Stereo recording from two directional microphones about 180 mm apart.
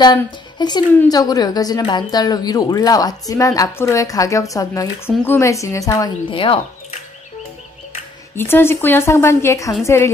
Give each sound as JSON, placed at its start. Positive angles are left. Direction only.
{"t": 0.0, "sound": "a woman's voice", "side_deg": 25}
{"t": 8.4, "sound": "a woman's voice", "side_deg": 10}